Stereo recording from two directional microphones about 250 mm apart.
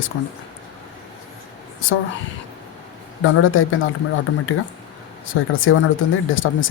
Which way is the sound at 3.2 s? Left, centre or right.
Left.